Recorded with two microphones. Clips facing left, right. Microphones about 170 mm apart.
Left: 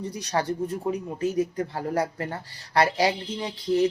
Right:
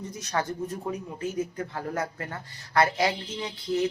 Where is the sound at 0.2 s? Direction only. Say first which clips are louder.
Left 3 dB; 35° left (ahead or behind).